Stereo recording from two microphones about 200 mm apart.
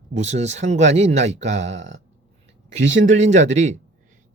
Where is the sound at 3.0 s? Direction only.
35° right (ahead or behind).